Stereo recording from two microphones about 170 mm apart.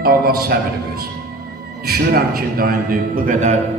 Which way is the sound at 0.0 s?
60° right (ahead or behind).